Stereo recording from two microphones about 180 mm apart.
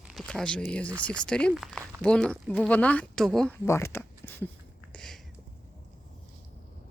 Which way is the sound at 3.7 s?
15° left (ahead or behind).